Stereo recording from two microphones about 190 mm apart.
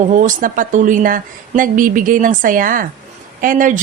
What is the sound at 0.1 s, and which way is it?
A woman's voice, 40° right (ahead or behind).